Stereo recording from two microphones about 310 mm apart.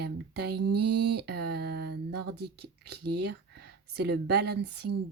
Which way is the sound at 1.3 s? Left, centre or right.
Right.